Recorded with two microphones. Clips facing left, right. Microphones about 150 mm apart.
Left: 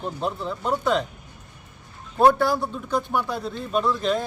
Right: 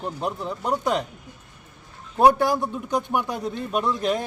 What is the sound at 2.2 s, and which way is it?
A man's voice, 15° right (ahead or behind).